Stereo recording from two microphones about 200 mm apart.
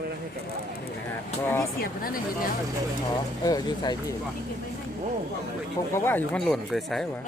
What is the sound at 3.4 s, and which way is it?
Speech, 20° left (ahead or behind).